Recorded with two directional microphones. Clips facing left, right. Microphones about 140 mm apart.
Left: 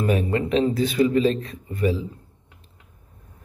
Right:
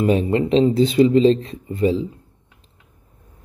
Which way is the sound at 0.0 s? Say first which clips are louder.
Right 5 dB; 25° right (ahead or behind).